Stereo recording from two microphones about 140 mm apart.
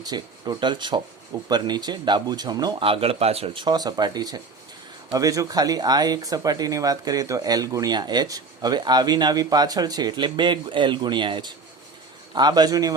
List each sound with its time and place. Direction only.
0.0 s speech: 30° right (ahead or behind)
2.8 s speech: 40° right (ahead or behind)
3.6 s speech: 30° right (ahead or behind)